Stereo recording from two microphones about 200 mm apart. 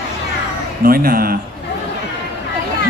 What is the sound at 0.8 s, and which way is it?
Speech, 45° right (ahead or behind).